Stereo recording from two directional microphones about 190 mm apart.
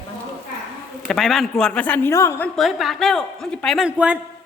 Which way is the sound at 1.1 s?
Centre (ahead or behind).